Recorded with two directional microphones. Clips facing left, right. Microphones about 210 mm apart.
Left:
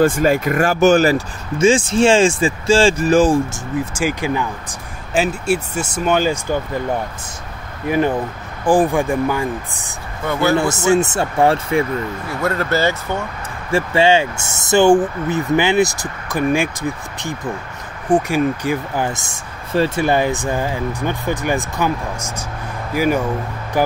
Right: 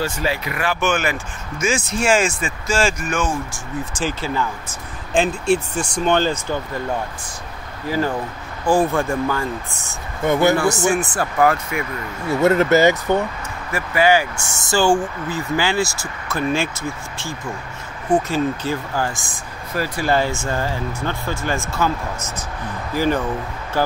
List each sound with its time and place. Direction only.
0.0 s speech: 50° left (ahead or behind); by 3.6 s 35° left (ahead or behind)
3.9 s speech: 10° left (ahead or behind)
7.8 s speech: 20° left (ahead or behind)
10.2 s speech: 20° right (ahead or behind)
10.6 s speech: 20° left (ahead or behind)
12.4 s speech: 20° right (ahead or behind)
13.7 s speech: 30° left (ahead or behind)
18.0 s speech: 15° left (ahead or behind)